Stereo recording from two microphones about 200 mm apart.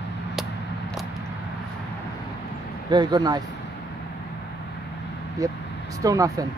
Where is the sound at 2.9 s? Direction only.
20° right (ahead or behind).